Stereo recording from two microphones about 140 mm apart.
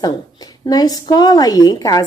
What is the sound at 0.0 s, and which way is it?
A woman's voice, 25° left (ahead or behind).